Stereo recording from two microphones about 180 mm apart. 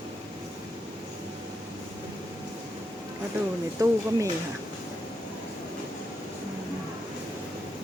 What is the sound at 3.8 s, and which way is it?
Speech, 20° right (ahead or behind).